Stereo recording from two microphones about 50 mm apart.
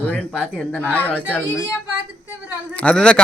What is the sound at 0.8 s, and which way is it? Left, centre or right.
Speech, left.